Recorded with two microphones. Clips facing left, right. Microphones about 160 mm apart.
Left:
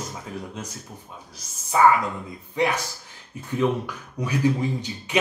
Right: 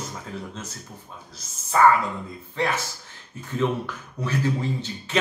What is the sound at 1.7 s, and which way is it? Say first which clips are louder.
Speech: even; 10° left (ahead or behind).